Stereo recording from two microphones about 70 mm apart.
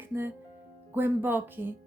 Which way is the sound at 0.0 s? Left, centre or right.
Right.